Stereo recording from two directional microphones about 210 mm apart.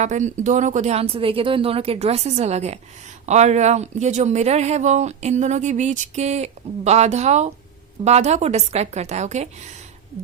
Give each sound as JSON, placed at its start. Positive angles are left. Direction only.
{"t": 0.0, "sound": "speech", "side_deg": -35}